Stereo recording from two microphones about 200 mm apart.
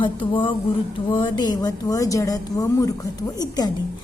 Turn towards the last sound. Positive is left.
turn(degrees=20)  # may be behind; listen again after turning